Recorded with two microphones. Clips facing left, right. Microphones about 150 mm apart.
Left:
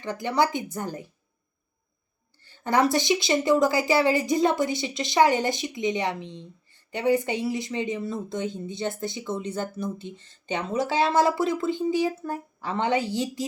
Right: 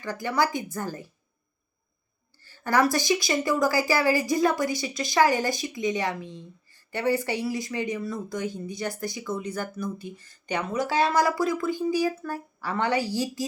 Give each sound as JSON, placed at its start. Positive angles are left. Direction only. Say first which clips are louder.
{"t": 0.0, "sound": "a woman's voice", "louder": "left 2 dB", "side_deg": 20}
{"t": 2.4, "sound": "a woman's voice", "louder": "left 1 dB", "side_deg": 20}